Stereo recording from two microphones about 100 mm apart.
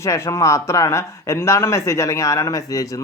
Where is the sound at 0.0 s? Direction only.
35° left (ahead or behind).